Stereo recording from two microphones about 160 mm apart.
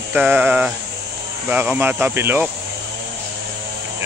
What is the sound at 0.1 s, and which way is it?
Speech, 10° right (ahead or behind).